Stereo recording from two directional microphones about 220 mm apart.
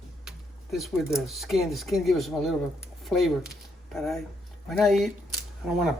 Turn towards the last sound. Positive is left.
turn(degrees=0)  # may be behind; listen again after turning